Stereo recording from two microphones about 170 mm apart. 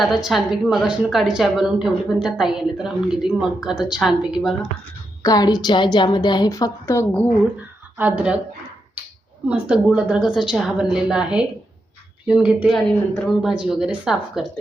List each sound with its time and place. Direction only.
0.0 s a woman's voice: centre (ahead or behind)
5.2 s a woman's voice: 20° left (ahead or behind)
7.9 s speech: 10° right (ahead or behind)
9.5 s a woman's voice: 5° right (ahead or behind)